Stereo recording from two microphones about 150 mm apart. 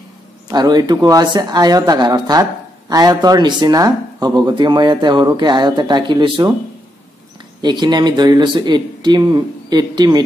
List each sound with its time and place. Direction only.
0.5 s speech: 25° right (ahead or behind)
7.6 s speech: 30° right (ahead or behind)